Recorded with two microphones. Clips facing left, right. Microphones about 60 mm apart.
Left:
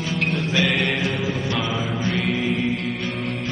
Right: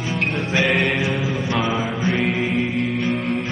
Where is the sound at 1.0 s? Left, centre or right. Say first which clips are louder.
Right 2 dB; centre.